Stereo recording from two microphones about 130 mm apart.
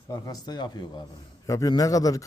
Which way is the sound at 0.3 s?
30° left (ahead or behind).